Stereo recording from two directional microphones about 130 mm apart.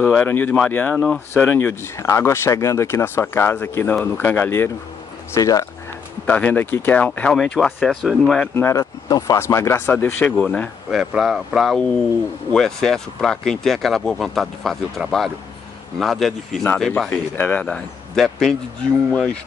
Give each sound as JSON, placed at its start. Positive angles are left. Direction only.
{"t": 0.0, "sound": "speech", "side_deg": 10}
{"t": 6.2, "sound": "speech", "side_deg": 15}
{"t": 8.5, "sound": "speech", "side_deg": 25}
{"t": 10.9, "sound": "speech", "side_deg": -5}